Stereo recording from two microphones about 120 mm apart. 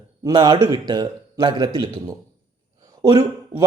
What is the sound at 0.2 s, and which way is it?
A man's voice, 30° right (ahead or behind).